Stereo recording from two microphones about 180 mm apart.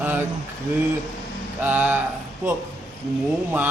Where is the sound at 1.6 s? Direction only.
10° right (ahead or behind).